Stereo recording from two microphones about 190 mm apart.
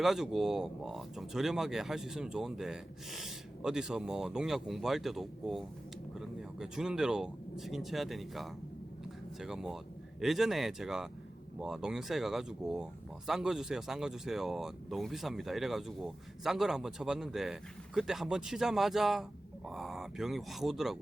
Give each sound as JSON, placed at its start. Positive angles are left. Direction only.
{"t": 0.0, "sound": "speech", "side_deg": 0}